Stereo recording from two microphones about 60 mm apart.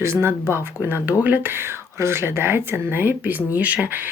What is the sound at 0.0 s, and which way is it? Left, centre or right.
Speech, right.